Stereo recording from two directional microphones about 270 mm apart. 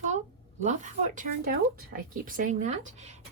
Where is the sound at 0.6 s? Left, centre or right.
Right.